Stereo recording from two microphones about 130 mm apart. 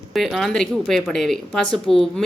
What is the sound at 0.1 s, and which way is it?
Speech, centre (ahead or behind).